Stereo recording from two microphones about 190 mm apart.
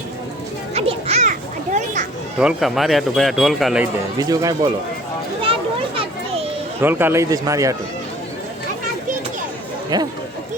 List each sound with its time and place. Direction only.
0.7 s children playing: 30° right (ahead or behind)
2.4 s speech: 5° right (ahead or behind)
4.2 s speech: 20° right (ahead or behind)
6.0 s children playing: 30° right (ahead or behind)
6.8 s speech: 10° right (ahead or behind)
9.9 s speech: 20° right (ahead or behind)